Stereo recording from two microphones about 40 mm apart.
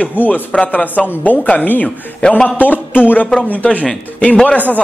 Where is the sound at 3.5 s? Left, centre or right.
Left.